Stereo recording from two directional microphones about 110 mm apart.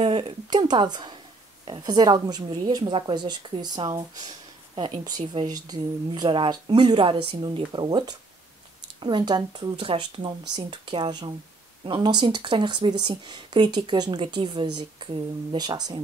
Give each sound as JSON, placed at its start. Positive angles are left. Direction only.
{"t": 0.0, "sound": "a woman's voice", "side_deg": -50}
{"t": 9.8, "sound": "speech", "side_deg": -55}